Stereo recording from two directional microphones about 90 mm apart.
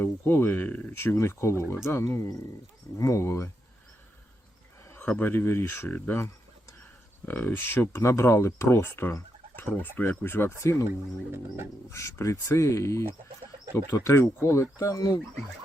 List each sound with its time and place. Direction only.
0.0 s speech: 25° left (ahead or behind)
4.9 s speech: 20° left (ahead or behind)
11.3 s wild animals: 30° right (ahead or behind)
11.9 s speech: 35° left (ahead or behind)